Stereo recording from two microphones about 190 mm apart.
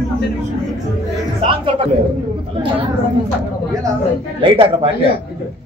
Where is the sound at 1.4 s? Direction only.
25° right (ahead or behind).